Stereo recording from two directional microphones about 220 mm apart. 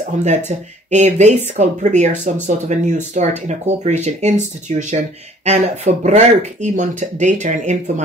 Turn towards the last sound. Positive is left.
turn(degrees=-35)  # may be behind; listen again after turning